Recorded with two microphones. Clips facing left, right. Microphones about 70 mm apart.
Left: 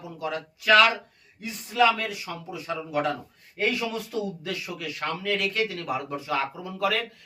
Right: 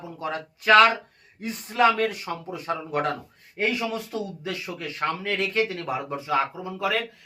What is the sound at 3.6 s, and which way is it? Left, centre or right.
Speech, right.